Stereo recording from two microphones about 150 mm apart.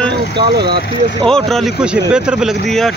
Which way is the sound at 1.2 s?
5° left (ahead or behind).